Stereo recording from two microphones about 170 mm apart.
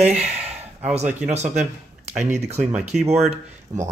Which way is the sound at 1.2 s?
45° right (ahead or behind).